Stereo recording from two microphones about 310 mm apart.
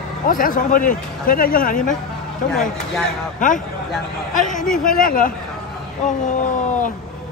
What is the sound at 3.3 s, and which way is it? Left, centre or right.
Speech, left.